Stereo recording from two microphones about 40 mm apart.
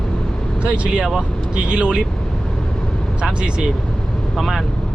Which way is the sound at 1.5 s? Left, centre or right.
Right.